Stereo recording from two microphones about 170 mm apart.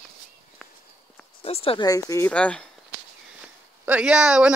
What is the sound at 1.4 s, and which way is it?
Speech, 35° left (ahead or behind).